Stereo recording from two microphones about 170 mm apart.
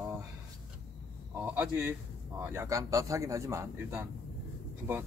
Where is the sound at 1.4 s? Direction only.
15° right (ahead or behind).